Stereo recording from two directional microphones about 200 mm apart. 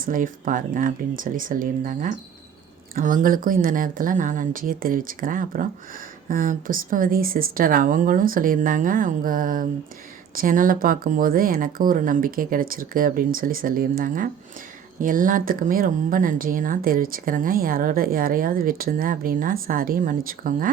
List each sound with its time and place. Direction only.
0.0 s speech: 40° right (ahead or behind)